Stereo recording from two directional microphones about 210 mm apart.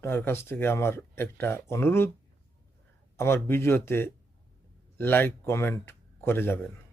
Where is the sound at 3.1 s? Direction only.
10° left (ahead or behind).